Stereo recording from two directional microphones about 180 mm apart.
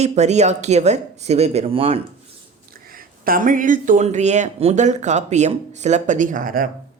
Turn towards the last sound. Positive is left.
turn(degrees=-50)  # may be behind; listen again after turning